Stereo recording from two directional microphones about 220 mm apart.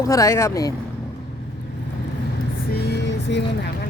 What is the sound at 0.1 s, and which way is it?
Speech, 15° left (ahead or behind).